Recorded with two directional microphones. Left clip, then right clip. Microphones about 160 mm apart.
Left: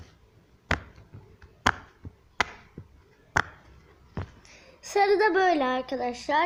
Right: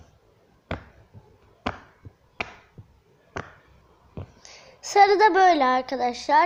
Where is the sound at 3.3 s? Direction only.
45° left (ahead or behind).